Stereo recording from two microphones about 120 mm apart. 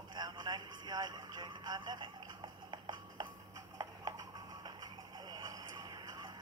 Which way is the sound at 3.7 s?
30° right (ahead or behind).